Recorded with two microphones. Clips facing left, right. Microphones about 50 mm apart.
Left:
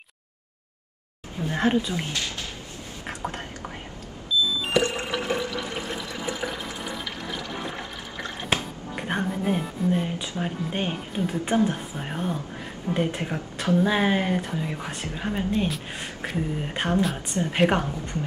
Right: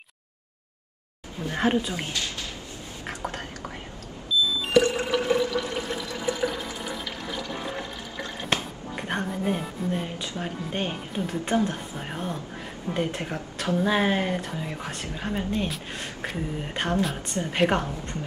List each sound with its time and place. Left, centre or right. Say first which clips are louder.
1.5 s a woman's voice: left 1 dB; centre
3.3 s whispering: left 1 dB; centre
4.6 s music: right 3 dB; centre
5.1 s drip: right 3 dB; centre
5.4 s water: right 3 dB; centre
7.2 s music: right 1 dB; centre
8.9 s music: left 2 dB; centre
10.4 s a woman's voice: left 2 dB; centre